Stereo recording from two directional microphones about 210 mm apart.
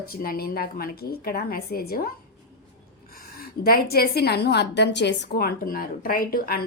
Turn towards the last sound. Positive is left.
turn(degrees=45)  # may be behind; listen again after turning